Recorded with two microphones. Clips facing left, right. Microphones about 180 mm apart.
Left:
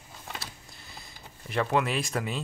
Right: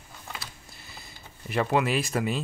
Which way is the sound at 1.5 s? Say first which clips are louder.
Right 2 dB; 5° right (ahead or behind).